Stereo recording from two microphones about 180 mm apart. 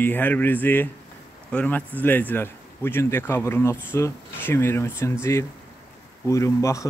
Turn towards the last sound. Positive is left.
turn(degrees=15)  # may be behind; listen again after turning